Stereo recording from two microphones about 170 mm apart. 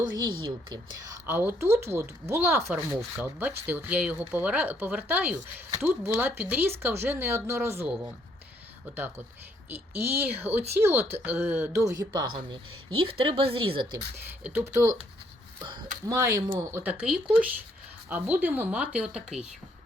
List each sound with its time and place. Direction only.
0.2 s speech: 30° right (ahead or behind)
1.3 s speech: 15° right (ahead or behind)
9.6 s speech: 10° right (ahead or behind); by 13.9 s 30° right (ahead or behind)
14.4 s speech: 15° right (ahead or behind)
16.0 s speech: 20° right (ahead or behind)
16.8 s speech: 5° right (ahead or behind)